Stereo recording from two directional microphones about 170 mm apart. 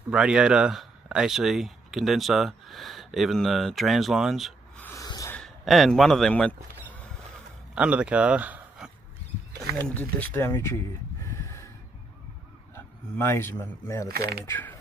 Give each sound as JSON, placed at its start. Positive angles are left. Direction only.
{"t": 0.1, "sound": "speech", "side_deg": -5}
{"t": 4.8, "sound": "snort", "side_deg": 20}
{"t": 5.3, "sound": "speech", "side_deg": 0}
{"t": 7.7, "sound": "speech", "side_deg": -5}
{"t": 9.8, "sound": "speech", "side_deg": 10}
{"t": 12.7, "sound": "speech", "side_deg": 15}
{"t": 14.0, "sound": "speech", "side_deg": -65}
{"t": 14.4, "sound": "speech", "side_deg": 10}